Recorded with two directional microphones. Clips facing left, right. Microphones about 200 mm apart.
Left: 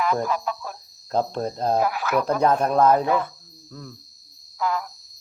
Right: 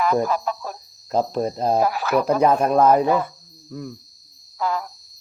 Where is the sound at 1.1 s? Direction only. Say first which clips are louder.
Right 3 dB; 5° right (ahead or behind).